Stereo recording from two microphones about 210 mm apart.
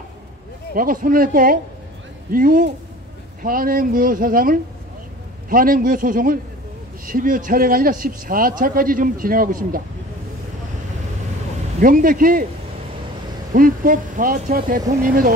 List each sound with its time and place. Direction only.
0.7 s a man's voice: 40° right (ahead or behind)
11.8 s a man's voice: 40° right (ahead or behind)
13.5 s a man's voice: 40° right (ahead or behind)